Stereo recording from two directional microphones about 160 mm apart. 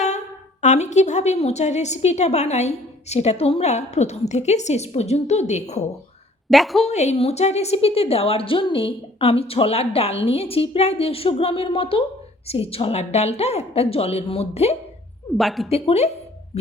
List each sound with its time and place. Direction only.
0.6 s a woman's voice: 45° left (ahead or behind)
6.5 s a woman's voice: centre (ahead or behind)
6.8 s a woman's voice: 45° left (ahead or behind)
15.4 s a woman's voice: centre (ahead or behind)
15.7 s a woman's voice: 40° left (ahead or behind)